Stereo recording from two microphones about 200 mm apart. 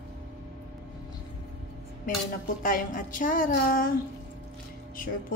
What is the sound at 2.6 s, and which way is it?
A woman's voice, 45° left (ahead or behind).